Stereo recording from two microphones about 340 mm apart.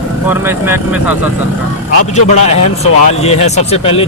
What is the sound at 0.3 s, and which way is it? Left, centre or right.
Speech, centre.